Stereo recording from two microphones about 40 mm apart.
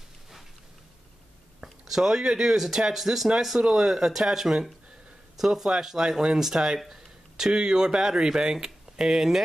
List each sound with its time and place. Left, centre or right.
1.6 s speech: centre